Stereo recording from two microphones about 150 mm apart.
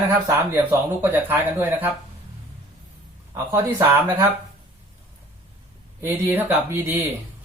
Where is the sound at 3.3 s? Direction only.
20° right (ahead or behind).